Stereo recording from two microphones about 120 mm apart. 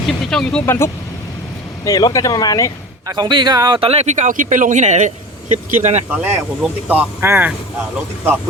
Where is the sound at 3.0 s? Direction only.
35° right (ahead or behind); by 4.1 s 50° right (ahead or behind).